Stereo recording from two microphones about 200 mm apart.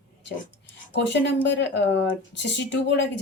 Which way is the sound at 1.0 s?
60° left (ahead or behind).